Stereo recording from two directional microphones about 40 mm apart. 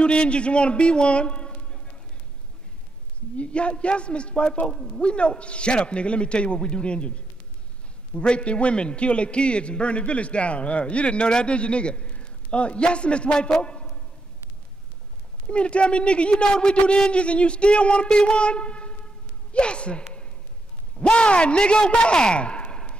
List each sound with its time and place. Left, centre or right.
0.0 s a man's voice: left
3.3 s a man's voice: left
15.4 s a man's voice: left